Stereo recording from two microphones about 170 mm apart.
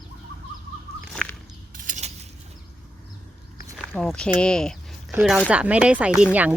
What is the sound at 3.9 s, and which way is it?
Speech, centre (ahead or behind).